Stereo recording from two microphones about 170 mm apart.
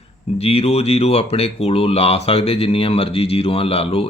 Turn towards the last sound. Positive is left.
turn(degrees=35)  # may be behind; listen again after turning